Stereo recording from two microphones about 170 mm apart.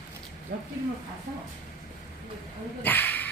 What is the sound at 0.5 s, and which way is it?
Speech, 55° right (ahead or behind).